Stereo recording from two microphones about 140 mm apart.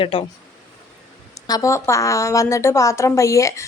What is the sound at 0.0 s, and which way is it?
Speech, 40° left (ahead or behind).